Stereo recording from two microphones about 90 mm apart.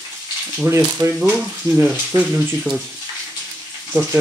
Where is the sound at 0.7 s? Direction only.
30° right (ahead or behind).